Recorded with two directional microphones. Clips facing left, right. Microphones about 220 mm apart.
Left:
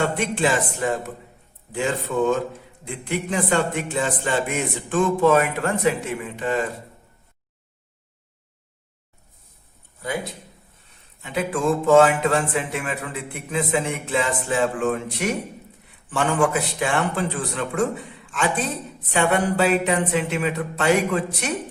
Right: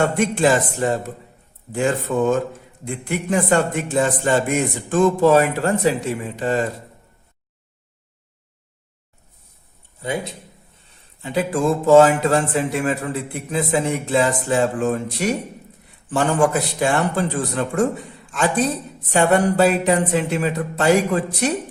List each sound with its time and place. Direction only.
0.2 s speech: 40° right (ahead or behind)
10.0 s a man's voice: 25° right (ahead or behind)